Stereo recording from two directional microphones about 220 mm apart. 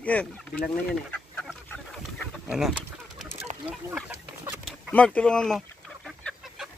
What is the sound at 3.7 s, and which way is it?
Chicken, 5° right (ahead or behind).